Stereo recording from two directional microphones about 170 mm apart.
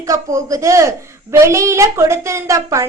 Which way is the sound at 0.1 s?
20° right (ahead or behind).